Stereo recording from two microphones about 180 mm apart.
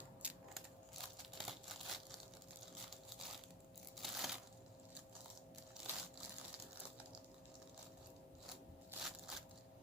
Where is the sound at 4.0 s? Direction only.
Centre (ahead or behind).